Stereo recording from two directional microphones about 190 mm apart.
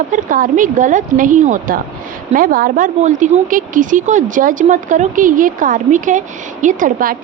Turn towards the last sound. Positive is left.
turn(degrees=-45)  # may be behind; listen again after turning